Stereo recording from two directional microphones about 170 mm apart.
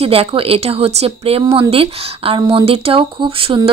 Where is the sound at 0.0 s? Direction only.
35° right (ahead or behind).